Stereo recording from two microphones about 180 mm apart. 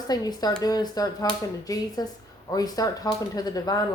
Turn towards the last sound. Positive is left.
turn(degrees=20)  # may be behind; listen again after turning